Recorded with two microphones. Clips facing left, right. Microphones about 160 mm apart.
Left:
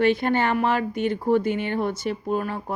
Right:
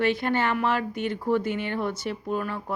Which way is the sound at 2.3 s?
35° left (ahead or behind).